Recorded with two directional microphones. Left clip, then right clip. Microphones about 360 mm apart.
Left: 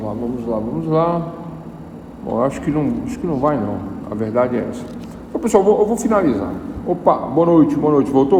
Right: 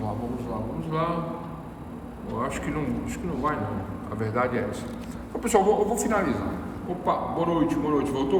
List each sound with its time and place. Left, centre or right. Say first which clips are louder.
0.9 s a man's voice: left 11 dB; centre
2.4 s a man's voice: left 10 dB; centre